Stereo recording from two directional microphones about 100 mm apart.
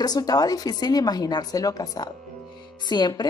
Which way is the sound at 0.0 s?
40° left (ahead or behind).